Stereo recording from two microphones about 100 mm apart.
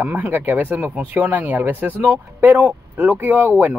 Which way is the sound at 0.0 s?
20° right (ahead or behind).